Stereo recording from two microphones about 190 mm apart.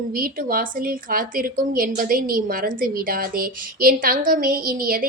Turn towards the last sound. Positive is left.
turn(degrees=-50)  # may be behind; listen again after turning